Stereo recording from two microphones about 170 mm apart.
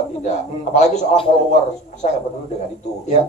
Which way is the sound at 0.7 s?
35° left (ahead or behind).